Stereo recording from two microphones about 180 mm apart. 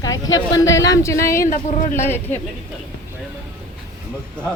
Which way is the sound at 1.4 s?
45° left (ahead or behind).